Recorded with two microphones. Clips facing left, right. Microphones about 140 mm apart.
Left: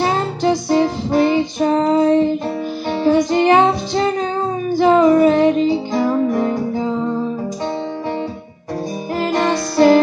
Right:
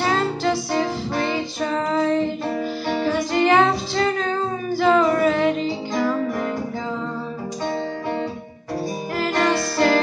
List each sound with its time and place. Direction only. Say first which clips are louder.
0.0 s music: left 4 dB; 20° left (ahead or behind)
1.9 s child singing: left 6 dB; 20° left (ahead or behind)
3.1 s music: left 6 dB; 20° left (ahead or behind)
9.2 s music: left 3 dB; 20° left (ahead or behind)